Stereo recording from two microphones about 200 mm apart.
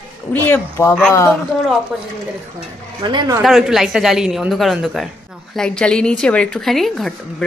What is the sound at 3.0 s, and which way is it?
Speech, 20° right (ahead or behind).